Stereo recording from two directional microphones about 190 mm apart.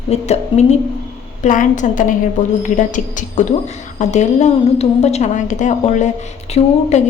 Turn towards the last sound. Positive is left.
turn(degrees=35)  # may be behind; listen again after turning